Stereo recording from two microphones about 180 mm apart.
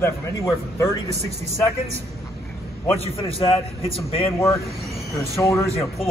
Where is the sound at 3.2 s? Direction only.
30° left (ahead or behind).